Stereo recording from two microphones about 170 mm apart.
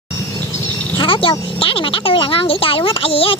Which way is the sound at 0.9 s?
30° left (ahead or behind).